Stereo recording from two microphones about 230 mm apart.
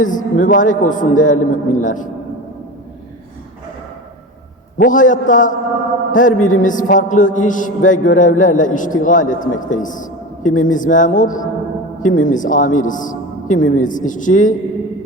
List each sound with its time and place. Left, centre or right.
0.0 s a man's voice: left
4.8 s a man's voice: left